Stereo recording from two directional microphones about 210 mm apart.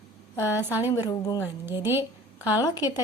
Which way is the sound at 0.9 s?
15° left (ahead or behind).